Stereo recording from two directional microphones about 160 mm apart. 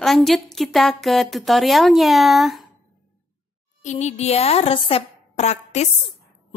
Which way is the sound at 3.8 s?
45° left (ahead or behind).